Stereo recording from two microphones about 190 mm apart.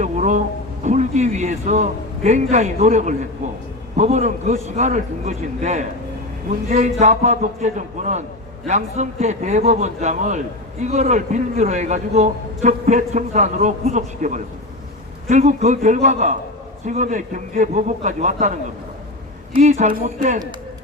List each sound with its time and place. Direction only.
0.0 s a man's voice: 40° right (ahead or behind)
19.5 s a man's voice: 40° right (ahead or behind)